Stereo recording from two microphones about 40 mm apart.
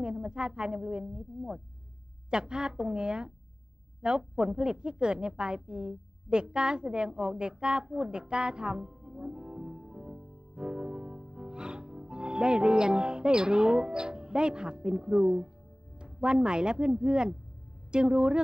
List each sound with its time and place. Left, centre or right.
0.0 s a woman's voice: right
2.3 s speech: right
9.2 s music: centre
12.1 s a woman's voice: right